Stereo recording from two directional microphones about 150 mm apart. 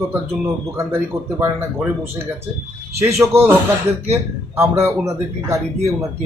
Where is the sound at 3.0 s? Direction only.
20° right (ahead or behind).